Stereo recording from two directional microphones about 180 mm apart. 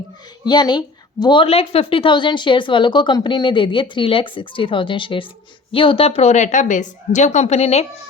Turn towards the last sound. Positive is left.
turn(degrees=35)  # may be behind; listen again after turning